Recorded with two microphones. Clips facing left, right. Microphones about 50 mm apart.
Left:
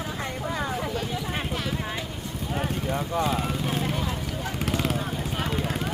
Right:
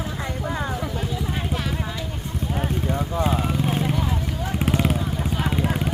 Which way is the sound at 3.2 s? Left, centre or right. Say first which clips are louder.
Right 3 dB; centre.